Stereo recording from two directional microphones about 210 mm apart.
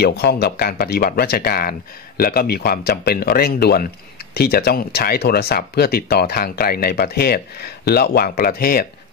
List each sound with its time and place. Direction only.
0.0 s speech: 50° left (ahead or behind)